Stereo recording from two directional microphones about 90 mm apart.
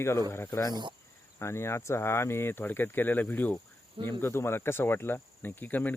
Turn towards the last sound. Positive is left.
turn(degrees=20)  # may be behind; listen again after turning